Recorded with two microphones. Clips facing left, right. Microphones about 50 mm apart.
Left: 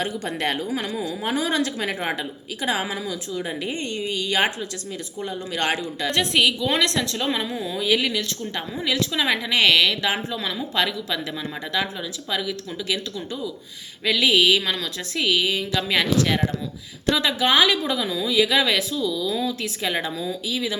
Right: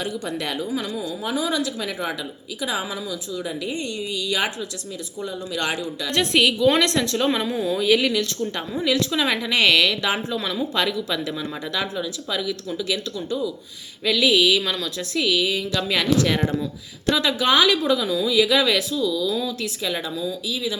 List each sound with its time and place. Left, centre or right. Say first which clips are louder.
0.0 s a woman's voice: left 2 dB; left
3.3 s a woman's voice: right 1 dB; left
6.1 s a woman's voice: right 1 dB; centre; by 20.7 s left